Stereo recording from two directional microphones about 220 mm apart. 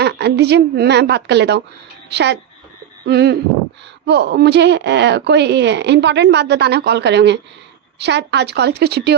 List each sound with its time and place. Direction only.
0.0 s speech: 50° right (ahead or behind)